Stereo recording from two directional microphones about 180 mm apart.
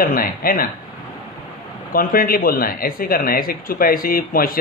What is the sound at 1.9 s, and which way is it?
Speech, 50° left (ahead or behind).